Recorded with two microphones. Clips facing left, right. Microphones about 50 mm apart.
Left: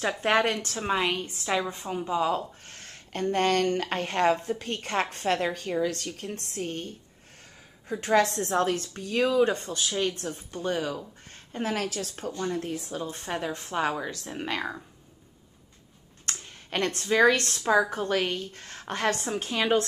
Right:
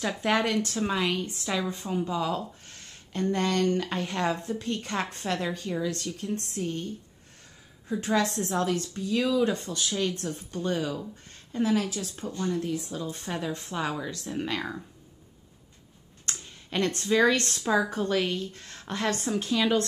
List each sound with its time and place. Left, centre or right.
0.2 s a woman's voice: left
0.7 s a woman's voice: left
2.6 s a sound: left
3.3 s a woman's voice: left
11.5 s speech: left
12.5 s a woman's voice: left; by 14.8 s centre
16.4 s a sound: left
17.0 s a woman's voice: left